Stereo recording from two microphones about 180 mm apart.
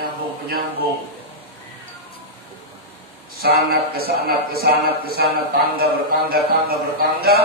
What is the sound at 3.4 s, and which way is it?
Speech, 55° right (ahead or behind).